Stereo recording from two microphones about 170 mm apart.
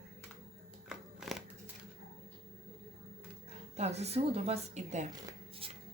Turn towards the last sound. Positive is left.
turn(degrees=-30)  # may be behind; listen again after turning